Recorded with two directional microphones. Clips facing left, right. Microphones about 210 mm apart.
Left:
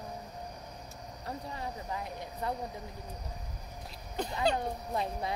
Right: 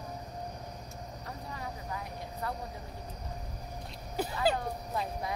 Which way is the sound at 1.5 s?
25° left (ahead or behind).